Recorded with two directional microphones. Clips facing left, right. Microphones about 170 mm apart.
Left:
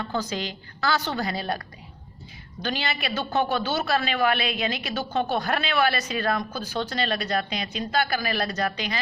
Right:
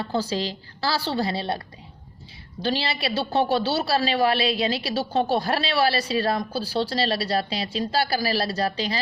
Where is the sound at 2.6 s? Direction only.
30° right (ahead or behind).